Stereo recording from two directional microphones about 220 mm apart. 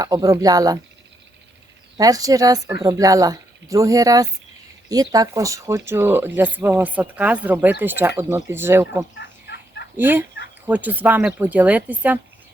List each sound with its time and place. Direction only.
0.0 s speech: 15° right (ahead or behind)
2.0 s speech: 15° right (ahead or behind)
9.1 s fowl: 50° left (ahead or behind)
10.0 s speech: 10° right (ahead or behind)